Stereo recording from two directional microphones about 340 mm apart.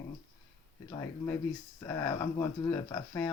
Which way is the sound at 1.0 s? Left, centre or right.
Centre.